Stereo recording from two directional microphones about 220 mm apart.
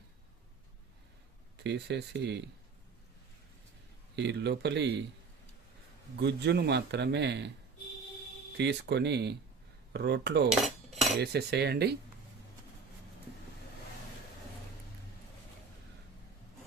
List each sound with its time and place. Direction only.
1.5 s a man's voice: 50° right (ahead or behind)
4.1 s a man's voice: 50° right (ahead or behind)
6.1 s a man's voice: 50° right (ahead or behind)
8.5 s a man's voice: 50° right (ahead or behind)
10.5 s cutlery: centre (ahead or behind)
11.2 s a man's voice: 50° right (ahead or behind)